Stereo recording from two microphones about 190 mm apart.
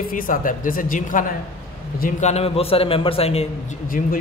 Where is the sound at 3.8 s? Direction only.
45° left (ahead or behind).